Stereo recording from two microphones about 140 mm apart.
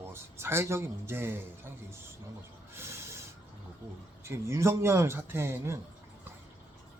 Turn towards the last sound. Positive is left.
turn(degrees=-15)  # may be behind; listen again after turning